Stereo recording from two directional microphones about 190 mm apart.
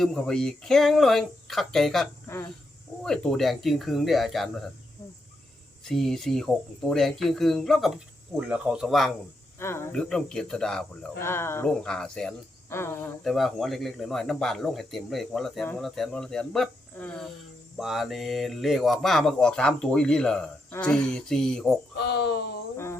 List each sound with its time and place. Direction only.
0.0 s speech: 5° left (ahead or behind)
2.2 s speech: 15° left (ahead or behind)
3.0 s speech: 5° left (ahead or behind)
5.8 s speech: centre (ahead or behind)
9.6 s speech: 15° left (ahead or behind)
13.2 s speech: centre (ahead or behind)
21.9 s speech: 65° left (ahead or behind)